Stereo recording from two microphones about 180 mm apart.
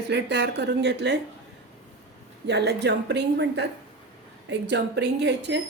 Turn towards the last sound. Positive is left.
turn(degrees=-75)  # may be behind; listen again after turning